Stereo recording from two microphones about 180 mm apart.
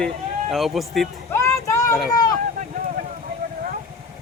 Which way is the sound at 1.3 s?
15° left (ahead or behind).